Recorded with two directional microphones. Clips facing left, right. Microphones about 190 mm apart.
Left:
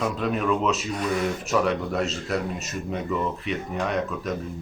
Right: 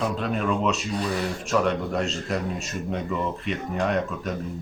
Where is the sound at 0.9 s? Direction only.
35° right (ahead or behind).